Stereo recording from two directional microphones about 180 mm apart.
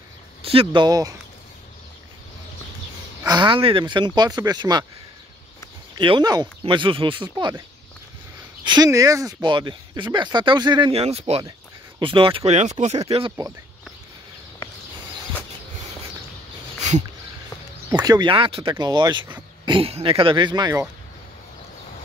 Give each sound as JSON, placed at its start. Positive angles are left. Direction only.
{"t": 0.4, "sound": "speech", "side_deg": -30}
{"t": 3.3, "sound": "speech", "side_deg": -25}
{"t": 5.9, "sound": "speech", "side_deg": -25}
{"t": 8.6, "sound": "speech", "side_deg": -20}
{"t": 17.9, "sound": "speech", "side_deg": -25}